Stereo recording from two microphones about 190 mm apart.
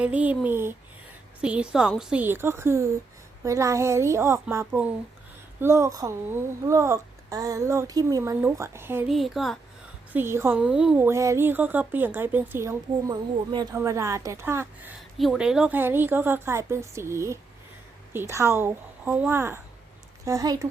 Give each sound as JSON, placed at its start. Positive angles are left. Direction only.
{"t": 0.0, "sound": "a woman's voice", "side_deg": -5}
{"t": 9.0, "sound": "a woman's voice", "side_deg": 0}
{"t": 10.1, "sound": "speech", "side_deg": -10}